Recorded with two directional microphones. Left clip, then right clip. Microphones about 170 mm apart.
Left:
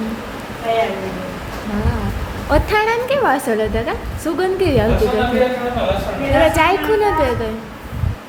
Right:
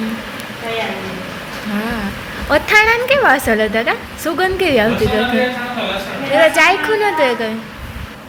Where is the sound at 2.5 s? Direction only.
Centre (ahead or behind).